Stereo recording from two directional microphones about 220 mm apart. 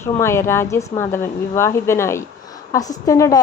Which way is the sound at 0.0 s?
10° left (ahead or behind).